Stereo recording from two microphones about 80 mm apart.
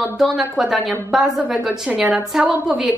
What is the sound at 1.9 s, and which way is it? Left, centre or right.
A woman's voice, centre.